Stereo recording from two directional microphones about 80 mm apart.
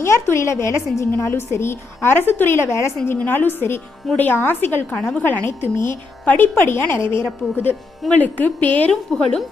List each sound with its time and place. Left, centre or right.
0.0 s a woman's voice: left; by 9.4 s centre